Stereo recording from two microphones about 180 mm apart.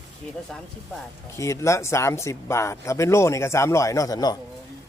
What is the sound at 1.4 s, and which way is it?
Speech, 15° left (ahead or behind).